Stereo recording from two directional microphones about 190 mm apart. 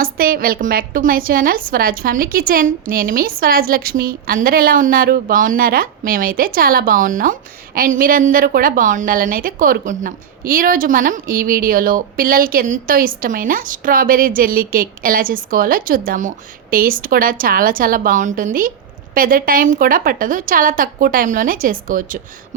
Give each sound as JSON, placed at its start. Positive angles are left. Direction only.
{"t": 0.0, "sound": "a woman's voice", "side_deg": -50}